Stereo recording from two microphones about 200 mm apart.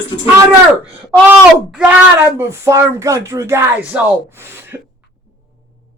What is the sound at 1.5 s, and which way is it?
Speech, 5° right (ahead or behind).